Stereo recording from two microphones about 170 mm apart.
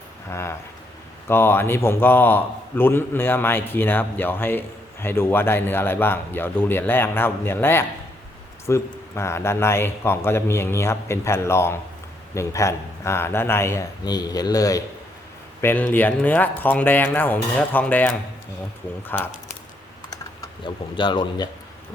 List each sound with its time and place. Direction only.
0.3 s a man's voice: 15° left (ahead or behind)
15.6 s a man's voice: 10° left (ahead or behind)
20.9 s a man's voice: 30° left (ahead or behind)